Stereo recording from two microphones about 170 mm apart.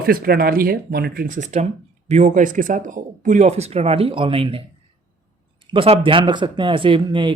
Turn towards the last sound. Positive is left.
turn(degrees=-30)  # may be behind; listen again after turning